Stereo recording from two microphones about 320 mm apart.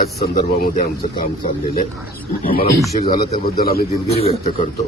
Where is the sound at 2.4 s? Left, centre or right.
Left.